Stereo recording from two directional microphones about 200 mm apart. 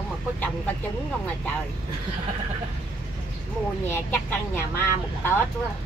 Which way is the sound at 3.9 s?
10° left (ahead or behind).